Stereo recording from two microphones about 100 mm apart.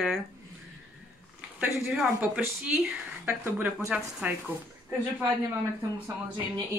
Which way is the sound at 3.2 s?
20° right (ahead or behind).